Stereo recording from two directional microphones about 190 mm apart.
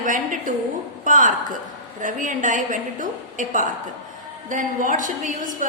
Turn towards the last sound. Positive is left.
turn(degrees=-45)  # may be behind; listen again after turning